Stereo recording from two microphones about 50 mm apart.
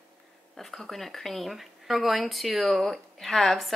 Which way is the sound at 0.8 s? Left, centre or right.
Centre.